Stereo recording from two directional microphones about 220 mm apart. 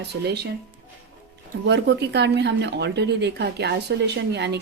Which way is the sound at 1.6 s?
50° right (ahead or behind).